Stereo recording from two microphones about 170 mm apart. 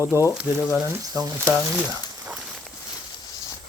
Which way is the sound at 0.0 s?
15° right (ahead or behind).